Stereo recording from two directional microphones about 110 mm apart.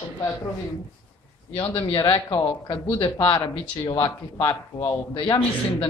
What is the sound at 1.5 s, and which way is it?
Speech, 50° left (ahead or behind).